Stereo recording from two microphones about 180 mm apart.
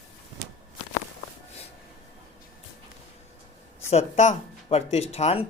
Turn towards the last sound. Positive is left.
turn(degrees=35)  # may be behind; listen again after turning